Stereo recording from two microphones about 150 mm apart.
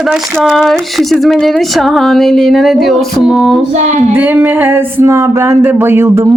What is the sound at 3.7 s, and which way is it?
Child singing, 50° right (ahead or behind).